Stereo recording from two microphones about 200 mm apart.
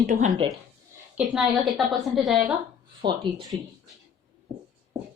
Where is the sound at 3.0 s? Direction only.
25° right (ahead or behind).